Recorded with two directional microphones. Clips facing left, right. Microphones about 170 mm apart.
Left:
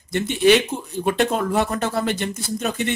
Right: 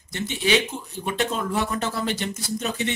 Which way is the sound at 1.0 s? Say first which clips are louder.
Left 5 dB; 55° left (ahead or behind).